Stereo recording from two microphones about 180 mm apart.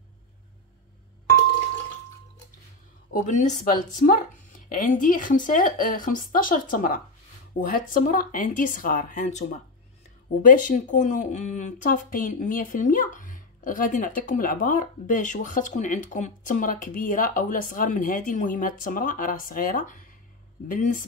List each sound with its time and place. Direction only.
3.1 s speech: 40° left (ahead or behind)